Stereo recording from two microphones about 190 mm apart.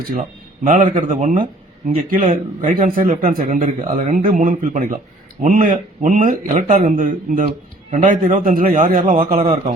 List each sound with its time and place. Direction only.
0.1 s speech: 45° right (ahead or behind)